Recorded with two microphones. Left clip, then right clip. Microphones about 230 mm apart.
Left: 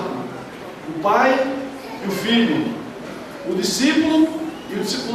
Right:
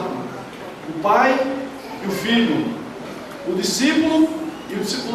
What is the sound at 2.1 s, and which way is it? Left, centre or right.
Speech, centre.